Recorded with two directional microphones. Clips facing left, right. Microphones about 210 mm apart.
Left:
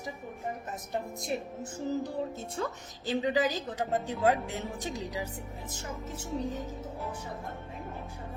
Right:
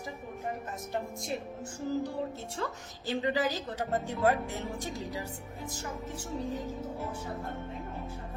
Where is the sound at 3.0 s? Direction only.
15° left (ahead or behind).